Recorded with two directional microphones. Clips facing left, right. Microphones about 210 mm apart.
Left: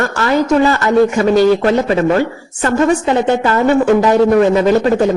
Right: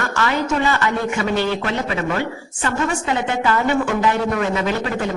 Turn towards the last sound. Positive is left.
turn(degrees=40)  # may be behind; listen again after turning